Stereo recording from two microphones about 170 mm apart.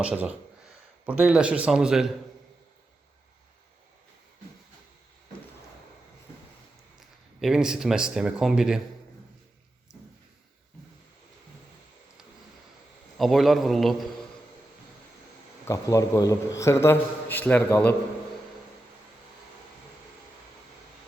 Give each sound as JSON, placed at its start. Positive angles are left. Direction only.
{"t": 0.0, "sound": "speech", "side_deg": -5}
{"t": 7.4, "sound": "speech", "side_deg": -5}
{"t": 13.1, "sound": "speech", "side_deg": 0}
{"t": 15.6, "sound": "a man's voice", "side_deg": 20}